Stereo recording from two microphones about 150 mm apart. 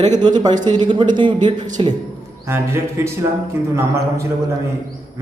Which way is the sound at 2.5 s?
15° right (ahead or behind).